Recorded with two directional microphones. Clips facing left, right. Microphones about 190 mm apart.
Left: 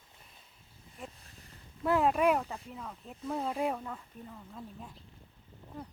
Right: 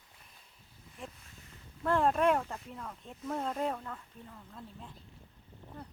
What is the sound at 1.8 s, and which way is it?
Speech, 10° left (ahead or behind).